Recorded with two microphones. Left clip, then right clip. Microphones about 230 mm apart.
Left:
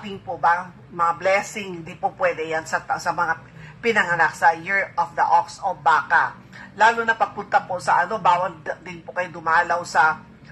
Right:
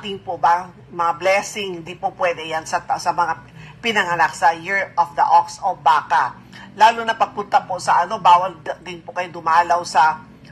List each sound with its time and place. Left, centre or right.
0.0 s speech: right